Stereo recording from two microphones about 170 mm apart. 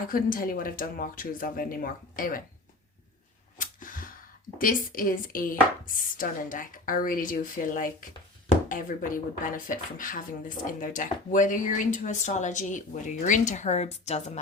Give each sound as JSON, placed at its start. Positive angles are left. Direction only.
{"t": 0.1, "sound": "speech", "side_deg": 55}
{"t": 3.6, "sound": "a sound", "side_deg": 55}
{"t": 4.5, "sound": "speech", "side_deg": 55}